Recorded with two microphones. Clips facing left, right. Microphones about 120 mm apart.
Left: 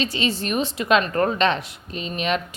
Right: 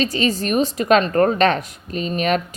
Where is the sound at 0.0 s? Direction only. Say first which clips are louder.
Right 4 dB; 40° right (ahead or behind).